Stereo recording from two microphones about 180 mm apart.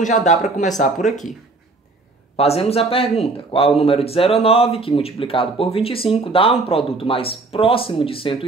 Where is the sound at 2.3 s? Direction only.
35° left (ahead or behind).